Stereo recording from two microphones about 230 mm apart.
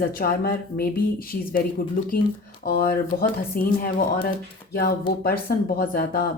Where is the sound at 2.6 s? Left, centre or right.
Left.